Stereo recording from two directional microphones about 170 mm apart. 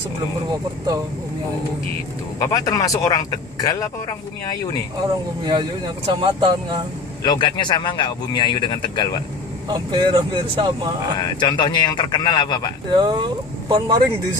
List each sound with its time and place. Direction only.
0.5 s speech: 25° right (ahead or behind)
2.3 s speech: 20° left (ahead or behind)
5.4 s speech: 25° right (ahead or behind)
7.2 s speech: 25° left (ahead or behind)
9.7 s speech: 25° right (ahead or behind)
11.3 s speech: 25° left (ahead or behind)
12.9 s speech: 25° right (ahead or behind)